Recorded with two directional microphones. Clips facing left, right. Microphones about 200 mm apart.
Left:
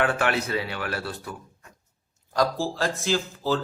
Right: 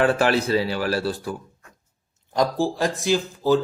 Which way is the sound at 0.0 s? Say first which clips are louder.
Right 5 dB; 30° right (ahead or behind).